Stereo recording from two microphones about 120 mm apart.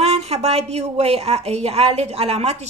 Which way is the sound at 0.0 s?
60° right (ahead or behind).